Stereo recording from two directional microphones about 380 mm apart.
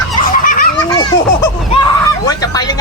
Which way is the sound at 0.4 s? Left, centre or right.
Left.